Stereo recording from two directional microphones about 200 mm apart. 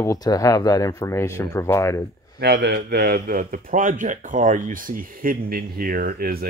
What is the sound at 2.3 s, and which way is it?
A man's voice, 55° right (ahead or behind).